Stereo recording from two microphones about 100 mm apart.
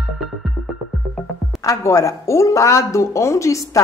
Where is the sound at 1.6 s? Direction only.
30° left (ahead or behind).